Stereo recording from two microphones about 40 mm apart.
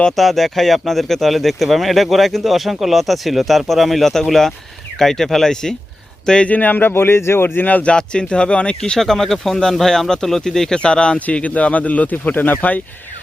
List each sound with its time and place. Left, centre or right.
0.2 s speech: centre; by 6.5 s left
6.5 s speech: left
6.9 s speech: left
7.6 s speech: left
7.9 s speech: left
8.8 s speech: centre
10.8 s speech: left
11.3 s speech: left